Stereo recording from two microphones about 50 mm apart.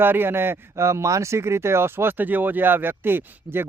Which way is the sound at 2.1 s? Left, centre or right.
Right.